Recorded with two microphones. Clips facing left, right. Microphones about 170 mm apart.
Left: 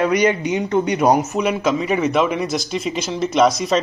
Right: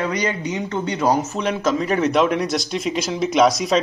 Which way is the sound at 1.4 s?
5° left (ahead or behind).